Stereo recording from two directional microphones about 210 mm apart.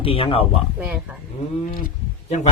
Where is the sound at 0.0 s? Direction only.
25° left (ahead or behind).